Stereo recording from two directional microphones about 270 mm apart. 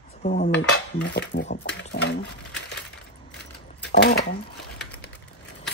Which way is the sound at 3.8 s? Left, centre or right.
Left.